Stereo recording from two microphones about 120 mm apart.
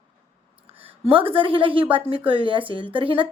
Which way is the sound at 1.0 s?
50° right (ahead or behind).